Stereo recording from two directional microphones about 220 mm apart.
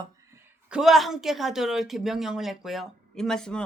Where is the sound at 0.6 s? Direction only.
5° right (ahead or behind).